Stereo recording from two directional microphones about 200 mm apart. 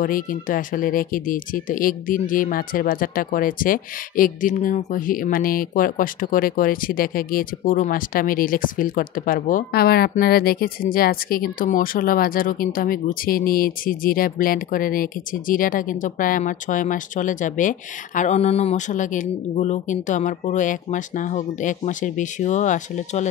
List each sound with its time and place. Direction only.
0.0 s speech: 45° left (ahead or behind)